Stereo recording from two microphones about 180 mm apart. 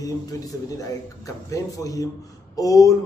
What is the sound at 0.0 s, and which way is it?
A man's voice, 20° left (ahead or behind).